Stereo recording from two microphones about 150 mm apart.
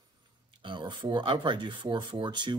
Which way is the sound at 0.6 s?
30° right (ahead or behind).